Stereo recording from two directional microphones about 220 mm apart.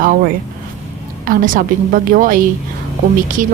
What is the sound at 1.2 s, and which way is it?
Speech, 40° right (ahead or behind).